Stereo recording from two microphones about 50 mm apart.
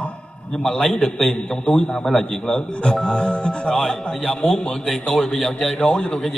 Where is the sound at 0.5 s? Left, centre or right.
Centre.